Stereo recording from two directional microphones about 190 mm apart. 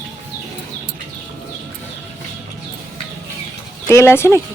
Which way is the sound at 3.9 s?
15° left (ahead or behind).